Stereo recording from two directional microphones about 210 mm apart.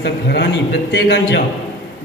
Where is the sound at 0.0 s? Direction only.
55° left (ahead or behind).